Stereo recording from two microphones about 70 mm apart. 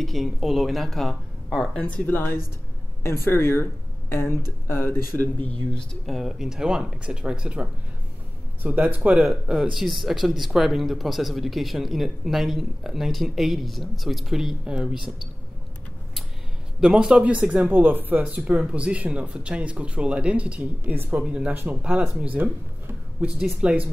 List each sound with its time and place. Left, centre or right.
0.0 s speech: centre
1.7 s speech: centre
2.0 s speech: left
6.0 s speech: centre
8.6 s speech: right
9.1 s speech: centre
9.8 s speech: centre
16.8 s speech: centre; by 18.2 s right
18.2 s speech: centre
20.9 s speech: right
21.2 s speech: centre
23.6 s speech: centre